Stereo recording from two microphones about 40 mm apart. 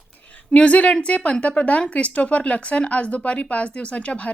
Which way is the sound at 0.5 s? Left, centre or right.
Left.